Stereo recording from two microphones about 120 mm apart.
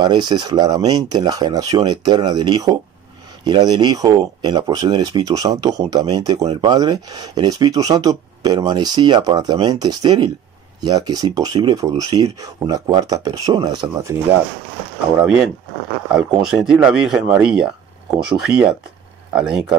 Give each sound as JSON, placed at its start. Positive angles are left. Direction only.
{"t": 0.0, "sound": "speech", "side_deg": -40}
{"t": 16.1, "sound": "speech", "side_deg": -5}
{"t": 19.3, "sound": "speech", "side_deg": -5}